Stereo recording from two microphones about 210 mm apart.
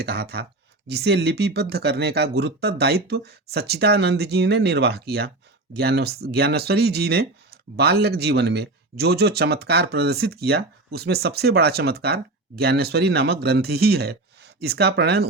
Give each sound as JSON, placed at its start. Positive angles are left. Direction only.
{"t": 0.0, "sound": "speech", "side_deg": -50}